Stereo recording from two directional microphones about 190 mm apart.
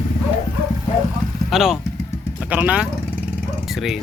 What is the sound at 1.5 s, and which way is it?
Speech, centre (ahead or behind).